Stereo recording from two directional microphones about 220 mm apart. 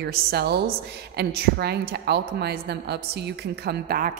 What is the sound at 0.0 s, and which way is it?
A woman's voice, 45° right (ahead or behind).